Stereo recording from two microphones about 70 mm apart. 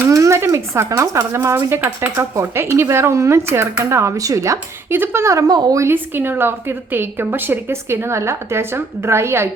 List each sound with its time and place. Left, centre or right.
0.1 s a woman's voice: right
4.9 s a woman's voice: right
5.3 s speech: right
5.9 s a woman's voice: right